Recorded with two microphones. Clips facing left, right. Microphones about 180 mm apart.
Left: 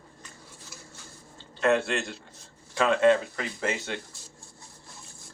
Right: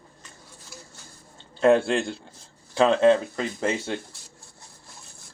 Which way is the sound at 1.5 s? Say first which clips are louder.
Right 6 dB; 30° right (ahead or behind).